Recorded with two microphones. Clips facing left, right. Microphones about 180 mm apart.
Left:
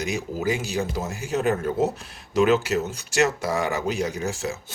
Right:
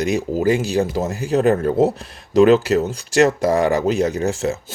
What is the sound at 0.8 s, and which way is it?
Speech, 40° right (ahead or behind).